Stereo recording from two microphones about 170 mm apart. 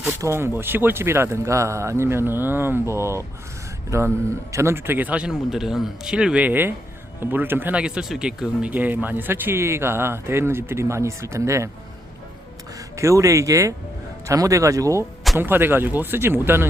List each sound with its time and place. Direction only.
0.0 s speech: 15° right (ahead or behind)
13.0 s speech: 20° right (ahead or behind)